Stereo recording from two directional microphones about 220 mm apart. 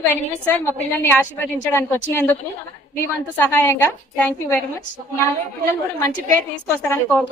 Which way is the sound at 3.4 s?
10° left (ahead or behind).